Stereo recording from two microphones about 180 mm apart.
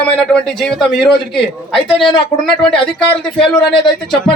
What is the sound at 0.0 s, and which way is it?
A man's voice, 5° left (ahead or behind).